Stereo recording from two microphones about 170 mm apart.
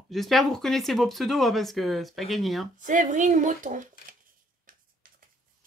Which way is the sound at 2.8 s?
50° right (ahead or behind).